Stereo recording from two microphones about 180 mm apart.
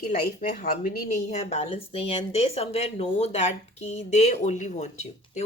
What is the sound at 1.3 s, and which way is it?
Speech, 40° left (ahead or behind).